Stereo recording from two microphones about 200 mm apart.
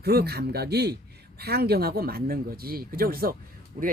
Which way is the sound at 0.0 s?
50° right (ahead or behind).